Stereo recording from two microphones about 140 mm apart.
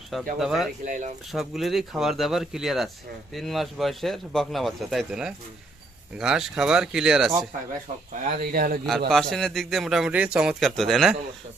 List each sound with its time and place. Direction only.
0.3 s a man's voice: centre (ahead or behind)
0.9 s speech: 65° right (ahead or behind)
1.3 s a man's voice: centre (ahead or behind)
8.1 s speech: 85° right
8.9 s a man's voice: centre (ahead or behind)